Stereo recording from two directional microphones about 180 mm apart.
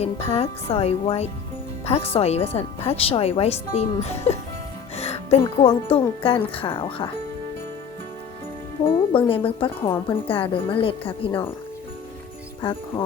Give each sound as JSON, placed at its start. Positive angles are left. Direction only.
{"t": 0.0, "sound": "speech", "side_deg": 35}
{"t": 4.9, "sound": "music", "side_deg": 35}
{"t": 5.6, "sound": "speech", "side_deg": 30}
{"t": 8.8, "sound": "music", "side_deg": 30}
{"t": 9.3, "sound": "speech", "side_deg": 30}